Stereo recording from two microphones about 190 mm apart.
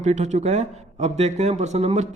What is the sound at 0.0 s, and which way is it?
A man's voice, 40° right (ahead or behind).